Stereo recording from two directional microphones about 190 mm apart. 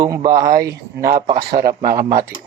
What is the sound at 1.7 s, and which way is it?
Speech, 20° right (ahead or behind).